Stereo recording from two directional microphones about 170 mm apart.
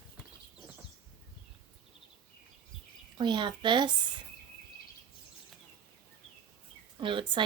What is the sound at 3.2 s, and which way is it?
Speech, 25° right (ahead or behind).